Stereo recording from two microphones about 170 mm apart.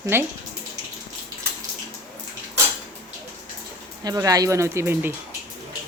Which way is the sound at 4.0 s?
20° right (ahead or behind).